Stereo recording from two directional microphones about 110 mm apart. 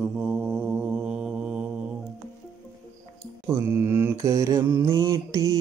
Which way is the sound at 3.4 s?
20° right (ahead or behind).